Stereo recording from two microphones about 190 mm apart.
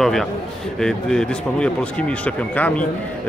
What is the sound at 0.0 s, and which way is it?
A man's voice, centre (ahead or behind).